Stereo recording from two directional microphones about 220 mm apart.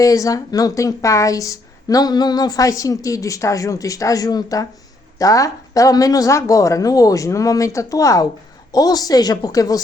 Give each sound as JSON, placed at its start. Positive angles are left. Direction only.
{"t": 0.0, "sound": "a woman's voice", "side_deg": 15}